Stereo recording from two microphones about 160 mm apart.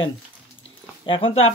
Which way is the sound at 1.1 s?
35° left (ahead or behind).